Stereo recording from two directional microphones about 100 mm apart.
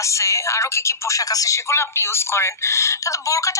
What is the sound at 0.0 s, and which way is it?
Speech, 30° left (ahead or behind).